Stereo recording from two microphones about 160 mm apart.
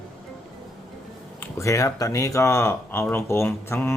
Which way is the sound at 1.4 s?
20° left (ahead or behind).